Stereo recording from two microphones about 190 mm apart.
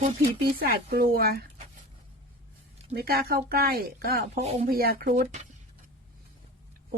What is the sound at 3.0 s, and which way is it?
Speech, 55° right (ahead or behind).